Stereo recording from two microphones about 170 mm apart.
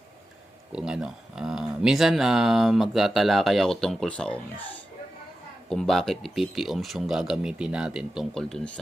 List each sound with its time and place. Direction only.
0.7 s speech: 5° right (ahead or behind)
5.6 s speech: 5° left (ahead or behind)